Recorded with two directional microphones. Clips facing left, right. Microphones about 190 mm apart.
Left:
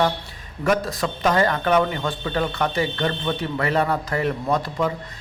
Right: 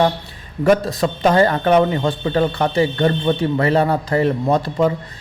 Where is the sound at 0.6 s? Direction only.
30° right (ahead or behind).